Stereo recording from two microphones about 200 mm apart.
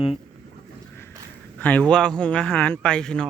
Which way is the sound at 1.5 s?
10° left (ahead or behind).